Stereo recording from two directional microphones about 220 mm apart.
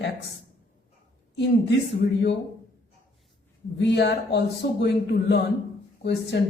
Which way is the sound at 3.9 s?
50° left (ahead or behind).